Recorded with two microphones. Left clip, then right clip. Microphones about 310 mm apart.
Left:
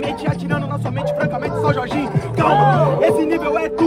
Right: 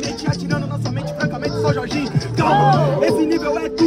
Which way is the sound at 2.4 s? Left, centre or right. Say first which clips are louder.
Left 1 dB; centre.